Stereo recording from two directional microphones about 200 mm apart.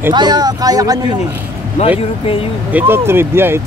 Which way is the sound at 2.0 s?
25° left (ahead or behind).